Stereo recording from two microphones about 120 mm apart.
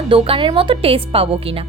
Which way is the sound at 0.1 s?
45° right (ahead or behind).